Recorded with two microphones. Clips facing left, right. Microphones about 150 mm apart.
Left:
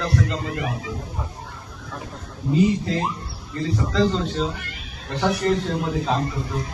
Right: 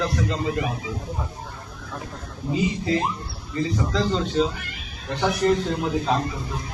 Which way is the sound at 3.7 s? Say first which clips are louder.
Left 4 dB; centre (ahead or behind).